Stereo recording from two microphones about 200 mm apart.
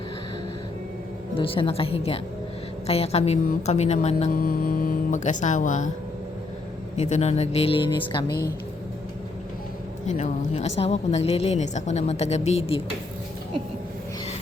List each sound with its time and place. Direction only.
1.4 s a woman's voice: 25° left (ahead or behind)
4.4 s a woman's voice: 50° left (ahead or behind)
6.9 s a woman's voice: 35° left (ahead or behind)
10.1 s a woman's voice: 35° left (ahead or behind)